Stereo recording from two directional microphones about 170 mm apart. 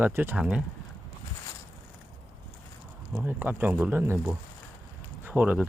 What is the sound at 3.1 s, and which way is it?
Speech, 10° right (ahead or behind).